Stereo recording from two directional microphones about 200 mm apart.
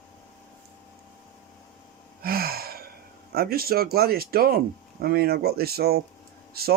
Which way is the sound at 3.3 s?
50° right (ahead or behind).